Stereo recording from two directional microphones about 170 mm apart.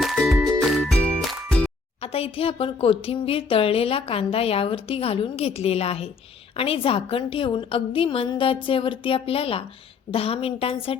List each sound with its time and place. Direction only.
0.0 s music: centre (ahead or behind)
2.0 s speech: 35° left (ahead or behind)